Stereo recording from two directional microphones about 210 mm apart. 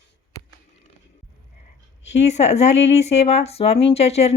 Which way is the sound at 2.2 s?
30° left (ahead or behind).